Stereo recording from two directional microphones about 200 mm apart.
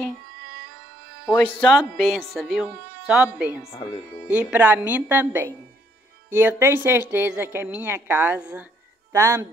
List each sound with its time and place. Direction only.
1.2 s speech: 10° left (ahead or behind); by 3.7 s 5° right (ahead or behind)
3.7 s speech: 30° left (ahead or behind)
4.3 s a woman's voice: 5° right (ahead or behind)